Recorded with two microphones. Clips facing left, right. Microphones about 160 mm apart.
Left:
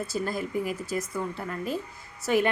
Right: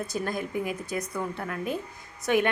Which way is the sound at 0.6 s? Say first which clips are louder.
Left 1 dB; 55° right (ahead or behind).